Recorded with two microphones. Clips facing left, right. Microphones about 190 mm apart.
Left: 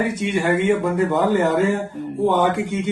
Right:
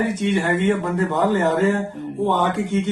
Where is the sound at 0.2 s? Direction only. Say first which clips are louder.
Right 3 dB; 10° left (ahead or behind).